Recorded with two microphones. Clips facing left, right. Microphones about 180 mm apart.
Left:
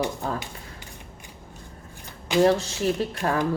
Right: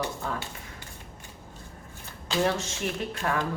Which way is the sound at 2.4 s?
35° left (ahead or behind).